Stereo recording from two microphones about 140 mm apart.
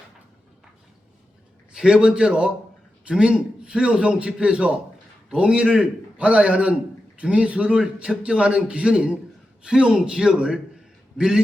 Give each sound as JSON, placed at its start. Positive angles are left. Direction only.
{"t": 1.7, "sound": "a man's voice", "side_deg": -5}